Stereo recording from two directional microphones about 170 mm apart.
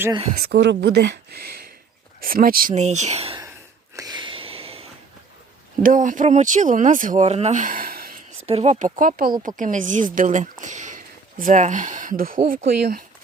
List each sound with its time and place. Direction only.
0.4 s speech: 80° right
2.2 s speech: 55° right (ahead or behind); by 3.3 s 40° right (ahead or behind)
3.9 s a sound: 25° right (ahead or behind)
5.8 s speech: 50° right (ahead or behind)
8.4 s speech: 35° right (ahead or behind); by 13.1 s 65° right (ahead or behind)